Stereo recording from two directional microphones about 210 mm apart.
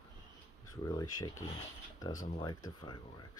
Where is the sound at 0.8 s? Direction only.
20° left (ahead or behind).